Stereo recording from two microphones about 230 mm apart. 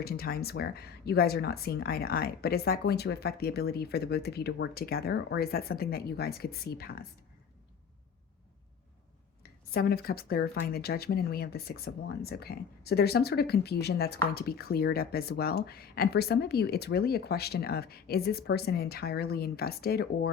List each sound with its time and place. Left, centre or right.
0.0 s speech: left
9.7 s speech: left